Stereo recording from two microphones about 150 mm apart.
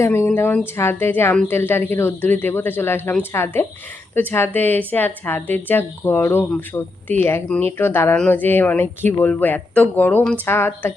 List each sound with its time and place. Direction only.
0.0 s a woman's voice: 15° left (ahead or behind)